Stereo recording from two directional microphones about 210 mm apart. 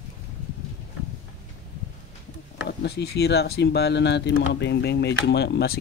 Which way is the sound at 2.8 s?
50° left (ahead or behind).